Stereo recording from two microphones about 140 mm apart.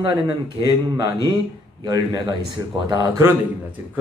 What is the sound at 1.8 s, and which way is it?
Speech, 30° right (ahead or behind).